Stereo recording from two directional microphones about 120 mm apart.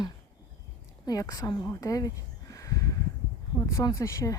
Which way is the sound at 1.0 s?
30° left (ahead or behind).